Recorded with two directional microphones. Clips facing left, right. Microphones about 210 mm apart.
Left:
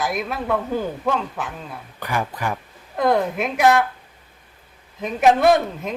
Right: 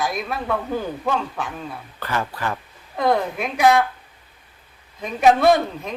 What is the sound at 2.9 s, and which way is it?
Speech, centre (ahead or behind).